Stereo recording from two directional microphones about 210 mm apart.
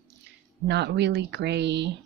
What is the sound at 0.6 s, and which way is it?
Speech, 55° right (ahead or behind).